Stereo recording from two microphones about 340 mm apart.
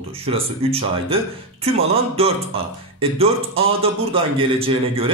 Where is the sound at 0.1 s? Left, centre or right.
Centre.